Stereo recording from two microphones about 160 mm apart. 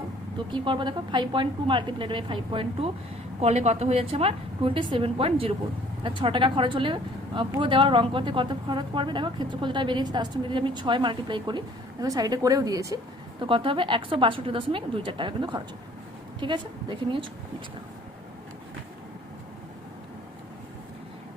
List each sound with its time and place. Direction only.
0.5 s a woman's voice: 30° right (ahead or behind)
13.4 s a woman's voice: 30° right (ahead or behind)